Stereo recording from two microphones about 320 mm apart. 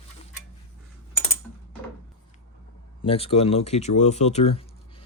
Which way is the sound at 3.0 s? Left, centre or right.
Centre.